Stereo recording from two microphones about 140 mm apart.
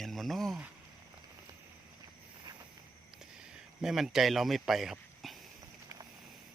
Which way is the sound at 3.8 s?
5° right (ahead or behind).